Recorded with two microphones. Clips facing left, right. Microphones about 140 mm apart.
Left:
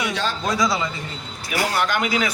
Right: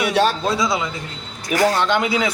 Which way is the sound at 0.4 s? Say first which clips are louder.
Right 1 dB; 25° right (ahead or behind).